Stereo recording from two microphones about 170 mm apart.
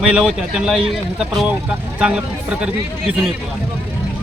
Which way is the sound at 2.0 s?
5° right (ahead or behind).